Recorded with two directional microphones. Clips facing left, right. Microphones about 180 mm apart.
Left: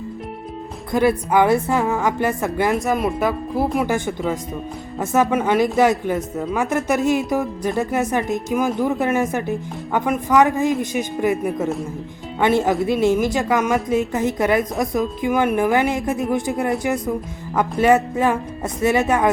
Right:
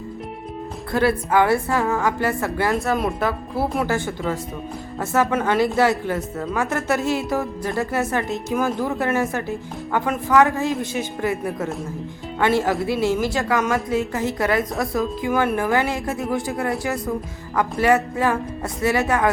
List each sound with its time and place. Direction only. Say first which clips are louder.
0.9 s a woman's voice: left 2 dB; 15° left (ahead or behind)